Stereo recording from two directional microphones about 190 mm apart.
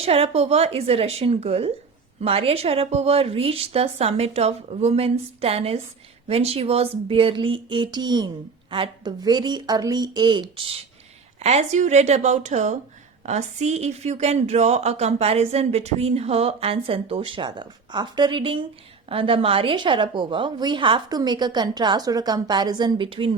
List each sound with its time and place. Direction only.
0.0 s a woman's voice: 30° right (ahead or behind)
11.4 s a woman's voice: 35° right (ahead or behind)